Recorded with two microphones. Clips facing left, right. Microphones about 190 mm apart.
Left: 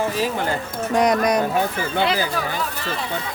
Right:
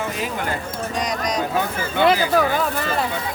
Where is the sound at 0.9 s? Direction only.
55° left (ahead or behind).